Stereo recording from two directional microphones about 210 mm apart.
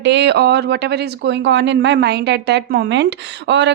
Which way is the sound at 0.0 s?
55° right (ahead or behind).